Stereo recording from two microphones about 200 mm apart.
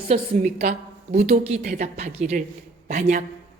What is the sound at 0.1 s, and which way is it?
Speech, 30° right (ahead or behind).